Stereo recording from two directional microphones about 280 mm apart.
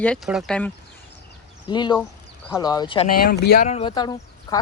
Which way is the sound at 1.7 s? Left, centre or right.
Centre.